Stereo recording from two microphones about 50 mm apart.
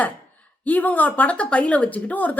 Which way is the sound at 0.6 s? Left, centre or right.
Left.